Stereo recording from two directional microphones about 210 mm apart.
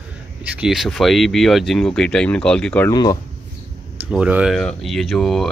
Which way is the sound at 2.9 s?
20° left (ahead or behind).